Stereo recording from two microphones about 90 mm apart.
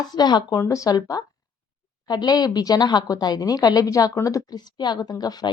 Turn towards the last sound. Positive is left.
turn(degrees=45)  # may be behind; listen again after turning